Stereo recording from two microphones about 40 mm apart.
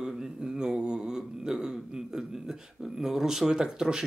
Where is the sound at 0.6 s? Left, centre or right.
Right.